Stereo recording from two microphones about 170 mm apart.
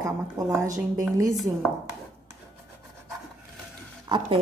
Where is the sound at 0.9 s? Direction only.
20° right (ahead or behind).